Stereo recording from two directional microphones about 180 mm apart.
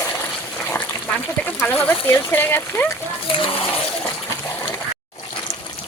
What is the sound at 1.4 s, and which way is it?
Speech, 10° left (ahead or behind).